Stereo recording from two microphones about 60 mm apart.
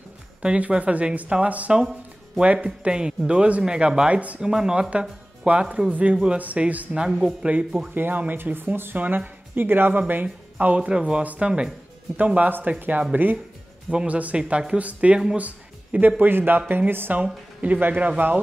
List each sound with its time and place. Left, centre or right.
0.4 s speech: centre
1.7 s speech: centre
7.0 s speech: centre
7.9 s speech: right
10.2 s speech: right
12.4 s speech: right